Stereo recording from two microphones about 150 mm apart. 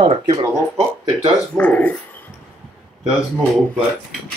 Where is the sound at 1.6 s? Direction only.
10° left (ahead or behind).